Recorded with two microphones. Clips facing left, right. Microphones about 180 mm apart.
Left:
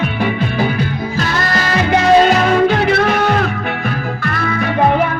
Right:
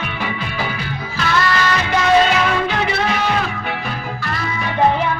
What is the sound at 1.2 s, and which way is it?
Music, 40° left (ahead or behind).